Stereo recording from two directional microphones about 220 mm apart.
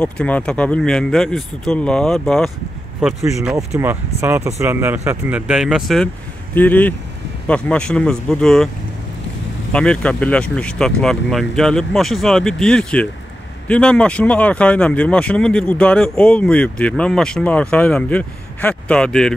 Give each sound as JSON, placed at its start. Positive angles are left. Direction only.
{"t": 0.0, "sound": "speech", "side_deg": 5}
{"t": 9.7, "sound": "speech", "side_deg": 5}